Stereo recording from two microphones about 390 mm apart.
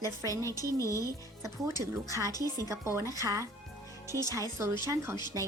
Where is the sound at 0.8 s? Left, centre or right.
Centre.